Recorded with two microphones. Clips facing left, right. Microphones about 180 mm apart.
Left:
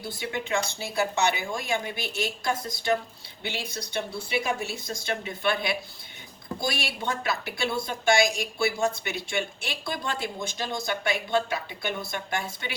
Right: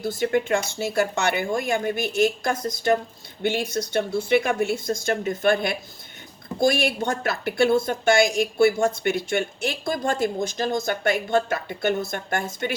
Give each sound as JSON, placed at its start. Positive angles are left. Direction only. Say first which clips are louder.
{"t": 0.0, "sound": "speech", "louder": "right 10 dB", "side_deg": -50}